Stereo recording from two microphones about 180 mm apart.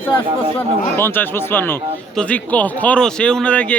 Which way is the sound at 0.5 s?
15° left (ahead or behind).